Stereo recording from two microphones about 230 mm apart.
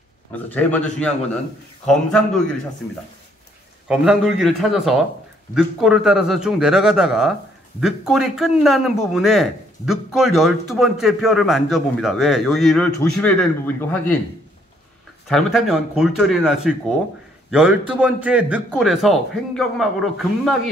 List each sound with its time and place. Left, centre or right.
0.5 s a man's voice: centre
1.9 s a man's voice: centre
3.9 s a man's voice: centre
15.2 s a man's voice: centre